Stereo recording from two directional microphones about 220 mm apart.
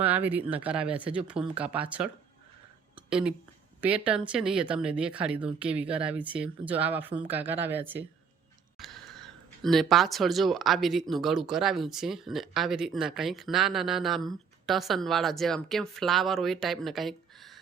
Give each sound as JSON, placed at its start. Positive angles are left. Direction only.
{"t": 0.0, "sound": "speech", "side_deg": -5}
{"t": 3.1, "sound": "speech", "side_deg": -5}